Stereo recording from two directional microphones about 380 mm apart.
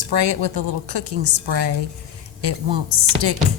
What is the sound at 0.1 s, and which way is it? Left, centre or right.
A woman's voice, right.